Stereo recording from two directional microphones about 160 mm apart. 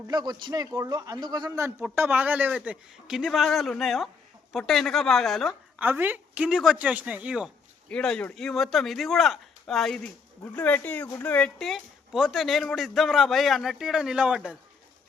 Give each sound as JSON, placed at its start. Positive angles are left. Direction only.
{"t": 0.1, "sound": "a man's voice", "side_deg": -25}
{"t": 5.8, "sound": "a man's voice", "side_deg": -10}
{"t": 7.9, "sound": "speech", "side_deg": 5}